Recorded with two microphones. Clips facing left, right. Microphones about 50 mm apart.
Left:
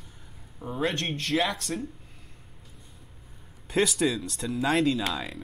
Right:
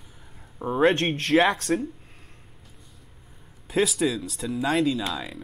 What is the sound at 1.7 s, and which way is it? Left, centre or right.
Speech, right.